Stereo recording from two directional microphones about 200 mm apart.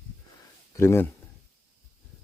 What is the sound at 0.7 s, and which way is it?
Speech, 15° left (ahead or behind).